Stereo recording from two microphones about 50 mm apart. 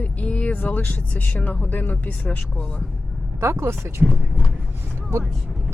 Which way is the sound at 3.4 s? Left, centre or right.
Right.